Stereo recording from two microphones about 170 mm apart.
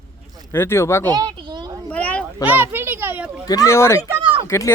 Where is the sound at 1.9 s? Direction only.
10° left (ahead or behind).